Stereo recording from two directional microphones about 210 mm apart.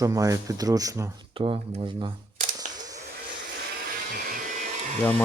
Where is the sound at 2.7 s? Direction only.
15° right (ahead or behind).